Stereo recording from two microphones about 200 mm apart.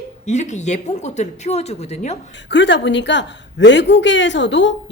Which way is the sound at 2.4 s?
60° left (ahead or behind).